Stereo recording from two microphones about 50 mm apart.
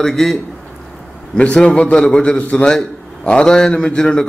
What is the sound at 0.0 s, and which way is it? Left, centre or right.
Speech, centre.